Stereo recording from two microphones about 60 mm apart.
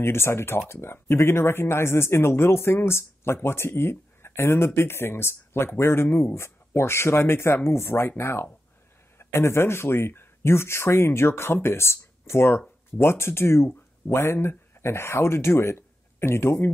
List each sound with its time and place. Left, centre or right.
0.0 s speech: left